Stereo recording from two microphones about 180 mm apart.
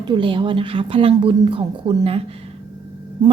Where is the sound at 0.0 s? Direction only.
25° right (ahead or behind).